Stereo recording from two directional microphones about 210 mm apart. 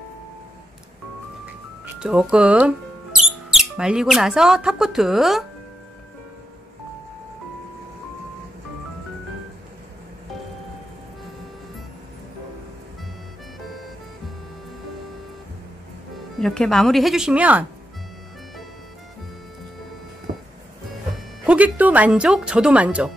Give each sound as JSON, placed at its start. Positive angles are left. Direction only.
{"t": 2.0, "sound": "speech", "side_deg": -5}
{"t": 16.3, "sound": "speech", "side_deg": 0}
{"t": 20.3, "sound": "music", "side_deg": -40}
{"t": 21.5, "sound": "speech", "side_deg": -5}